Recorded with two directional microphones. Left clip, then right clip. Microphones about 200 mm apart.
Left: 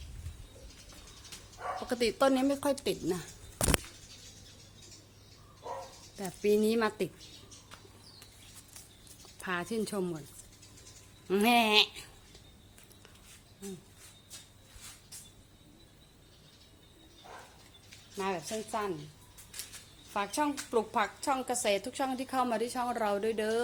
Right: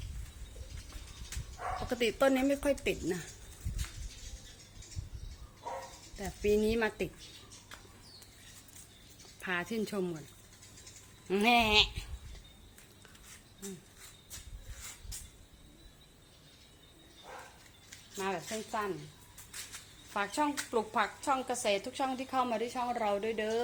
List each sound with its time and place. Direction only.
1.9 s speech: 10° left (ahead or behind)
6.1 s speech: 20° left (ahead or behind)
9.4 s speech: 15° left (ahead or behind)
11.3 s a woman's voice: 25° left (ahead or behind)
18.2 s a woman's voice: 15° left (ahead or behind)
20.1 s a woman's voice: 15° left (ahead or behind)